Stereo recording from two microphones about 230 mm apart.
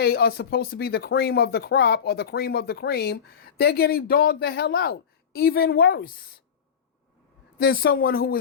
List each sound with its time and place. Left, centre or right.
0.0 s speech: left
7.6 s speech: left